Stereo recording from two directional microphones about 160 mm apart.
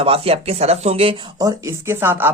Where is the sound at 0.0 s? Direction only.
35° right (ahead or behind).